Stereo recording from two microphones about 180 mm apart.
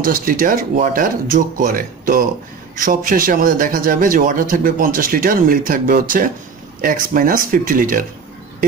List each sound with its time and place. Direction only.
0.0 s speech: 50° right (ahead or behind)